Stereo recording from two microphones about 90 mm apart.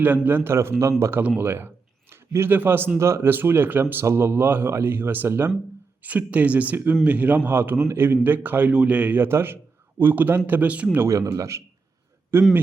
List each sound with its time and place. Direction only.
0.0 s a man's voice: 20° right (ahead or behind)
10.9 s a man's voice: 25° right (ahead or behind)